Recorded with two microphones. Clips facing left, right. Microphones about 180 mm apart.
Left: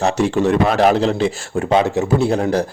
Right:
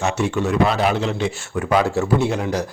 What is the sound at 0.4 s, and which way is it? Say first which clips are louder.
Speech: left 3 dB; 65° left (ahead or behind).